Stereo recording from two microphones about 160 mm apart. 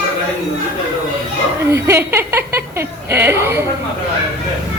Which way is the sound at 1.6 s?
15° right (ahead or behind).